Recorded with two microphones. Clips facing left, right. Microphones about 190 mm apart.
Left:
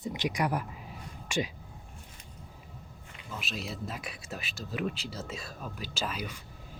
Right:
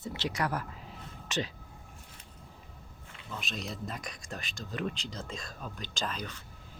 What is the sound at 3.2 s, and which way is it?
Speech, 5° left (ahead or behind).